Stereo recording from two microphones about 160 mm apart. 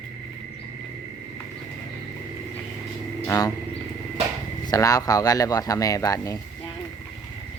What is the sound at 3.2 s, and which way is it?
Wild animals, 20° left (ahead or behind).